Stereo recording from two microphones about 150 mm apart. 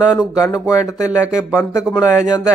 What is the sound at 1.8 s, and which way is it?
Speech, 5° right (ahead or behind).